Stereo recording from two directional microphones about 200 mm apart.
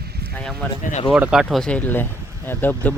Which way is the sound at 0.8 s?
35° left (ahead or behind).